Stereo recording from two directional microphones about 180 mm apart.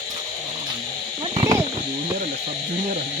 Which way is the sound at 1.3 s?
20° right (ahead or behind).